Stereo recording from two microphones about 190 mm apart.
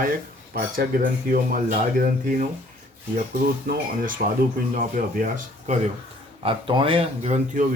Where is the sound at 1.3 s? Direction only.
50° right (ahead or behind).